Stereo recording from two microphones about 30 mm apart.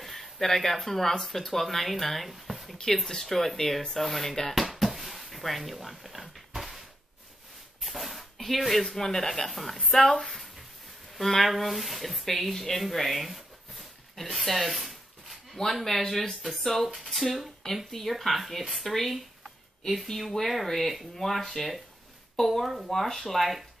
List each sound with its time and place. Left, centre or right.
0.0 s speech: centre
2.3 s a sound: centre
3.1 s speech: centre
4.6 s a sound: centre
7.8 s dog: centre
8.4 s speech: centre
9.0 s speech: centre
9.3 s speech: centre
14.1 s a sound: centre
15.7 s speech: centre
20.2 s speech: centre